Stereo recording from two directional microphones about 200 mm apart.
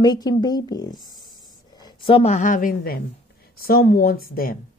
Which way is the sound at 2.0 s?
30° left (ahead or behind).